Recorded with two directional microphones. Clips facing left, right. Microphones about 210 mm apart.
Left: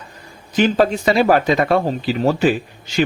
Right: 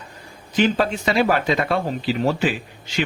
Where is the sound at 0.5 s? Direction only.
40° left (ahead or behind).